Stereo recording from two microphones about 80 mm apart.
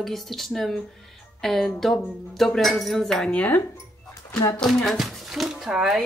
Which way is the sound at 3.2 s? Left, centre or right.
Left.